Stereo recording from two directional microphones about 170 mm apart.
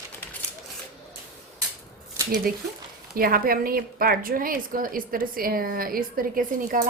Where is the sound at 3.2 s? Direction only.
60° right (ahead or behind).